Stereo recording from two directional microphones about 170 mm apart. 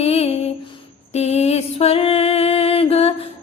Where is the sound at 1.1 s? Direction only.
40° left (ahead or behind).